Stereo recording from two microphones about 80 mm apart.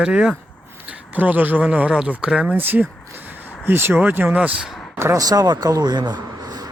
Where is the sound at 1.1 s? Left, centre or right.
Right.